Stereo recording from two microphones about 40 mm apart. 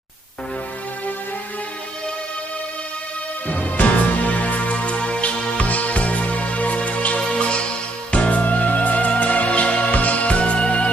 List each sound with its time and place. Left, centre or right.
3.5 s music: left